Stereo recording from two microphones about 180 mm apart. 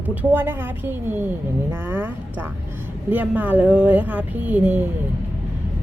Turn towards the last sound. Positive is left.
turn(degrees=-10)  # may be behind; listen again after turning